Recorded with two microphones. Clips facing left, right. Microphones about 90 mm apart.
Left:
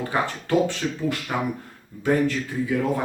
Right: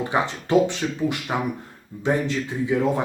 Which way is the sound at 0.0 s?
20° right (ahead or behind).